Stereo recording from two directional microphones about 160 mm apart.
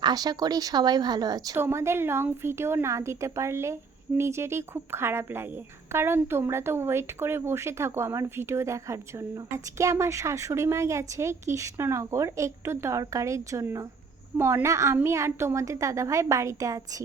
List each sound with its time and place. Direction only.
0.0 s a woman's voice: 25° right (ahead or behind)